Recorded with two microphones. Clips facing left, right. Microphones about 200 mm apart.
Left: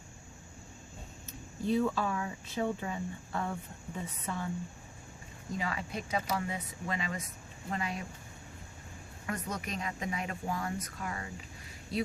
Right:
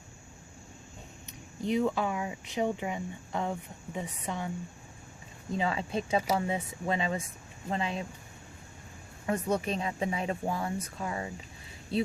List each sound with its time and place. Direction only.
1.3 s speech: 15° right (ahead or behind)
5.5 s speech: 25° right (ahead or behind)
9.2 s speech: 30° right (ahead or behind)